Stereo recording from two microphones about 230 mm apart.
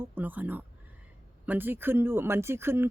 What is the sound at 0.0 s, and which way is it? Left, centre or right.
Speech, centre.